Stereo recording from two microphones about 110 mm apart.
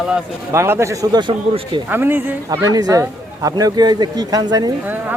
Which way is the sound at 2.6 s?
35° right (ahead or behind).